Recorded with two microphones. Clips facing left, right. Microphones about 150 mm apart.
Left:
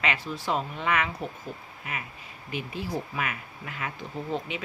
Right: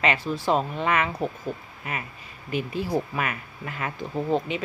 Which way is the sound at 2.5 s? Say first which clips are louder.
Right 6 dB; 45° right (ahead or behind).